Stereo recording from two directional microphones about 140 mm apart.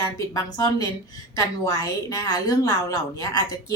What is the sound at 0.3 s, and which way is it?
A woman's voice, 25° left (ahead or behind).